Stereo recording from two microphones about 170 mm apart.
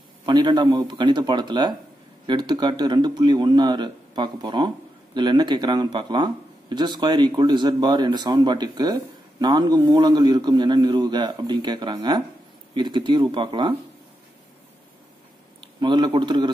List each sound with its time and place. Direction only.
0.2 s speech: 25° right (ahead or behind)
15.6 s a man's voice: 25° right (ahead or behind)